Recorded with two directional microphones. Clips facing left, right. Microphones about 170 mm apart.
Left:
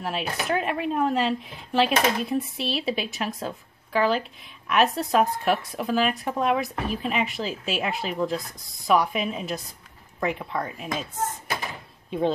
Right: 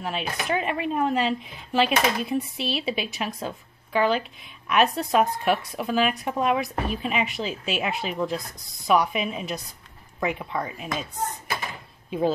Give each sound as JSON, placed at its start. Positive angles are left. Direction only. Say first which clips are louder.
{"t": 0.0, "sound": "speech", "louder": "left 1 dB", "side_deg": 0}
{"t": 12.1, "sound": "speech", "louder": "even", "side_deg": -5}